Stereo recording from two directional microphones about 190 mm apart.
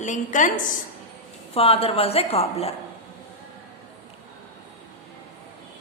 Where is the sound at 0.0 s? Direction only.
40° left (ahead or behind).